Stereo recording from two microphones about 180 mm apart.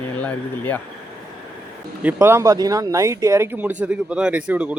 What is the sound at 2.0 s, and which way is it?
Speech, 10° right (ahead or behind).